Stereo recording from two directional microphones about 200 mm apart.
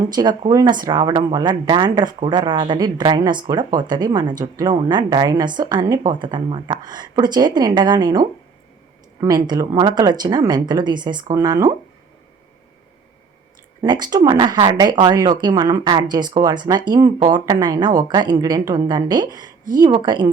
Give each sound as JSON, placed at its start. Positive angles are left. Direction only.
{"t": 0.1, "sound": "speech", "side_deg": -20}
{"t": 13.8, "sound": "speech", "side_deg": -20}